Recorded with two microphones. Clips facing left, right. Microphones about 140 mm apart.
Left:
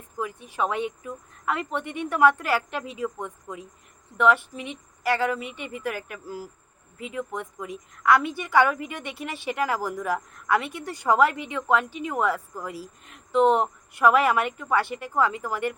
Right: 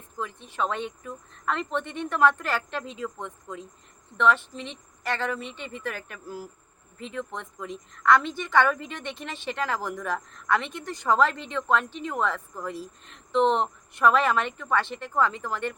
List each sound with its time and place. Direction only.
0.2 s a woman's voice: 10° left (ahead or behind)